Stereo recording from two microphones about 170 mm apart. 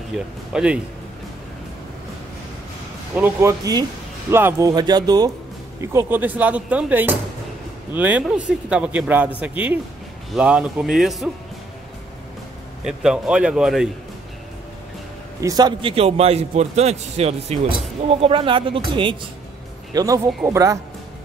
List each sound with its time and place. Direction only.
0.1 s speech: centre (ahead or behind)
3.2 s speech: 15° right (ahead or behind)
12.8 s speech: 5° right (ahead or behind)
15.4 s a man's voice: 25° right (ahead or behind)
19.9 s a man's voice: 20° right (ahead or behind)